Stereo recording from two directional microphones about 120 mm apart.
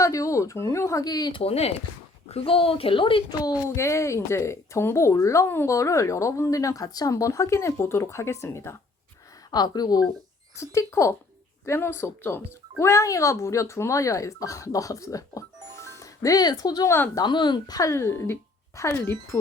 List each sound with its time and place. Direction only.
0.0 s speech: 25° left (ahead or behind)
1.4 s a child's voice: 55° left (ahead or behind)
3.4 s speech: 30° left (ahead or behind)
9.5 s speech: 35° left (ahead or behind)
10.6 s speech: 25° left (ahead or behind)